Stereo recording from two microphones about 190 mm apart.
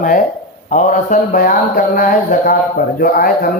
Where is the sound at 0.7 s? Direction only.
40° left (ahead or behind).